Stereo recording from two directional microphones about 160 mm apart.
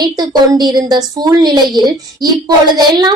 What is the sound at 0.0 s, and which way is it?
A woman's voice, 25° right (ahead or behind).